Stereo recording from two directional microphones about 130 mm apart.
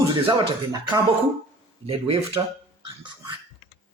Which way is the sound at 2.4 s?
30° right (ahead or behind).